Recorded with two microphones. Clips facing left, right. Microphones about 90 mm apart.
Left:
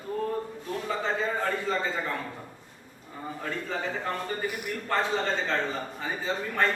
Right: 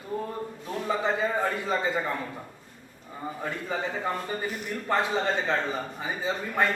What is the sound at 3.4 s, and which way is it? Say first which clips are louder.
A man's voice: right 1 dB; 15° right (ahead or behind).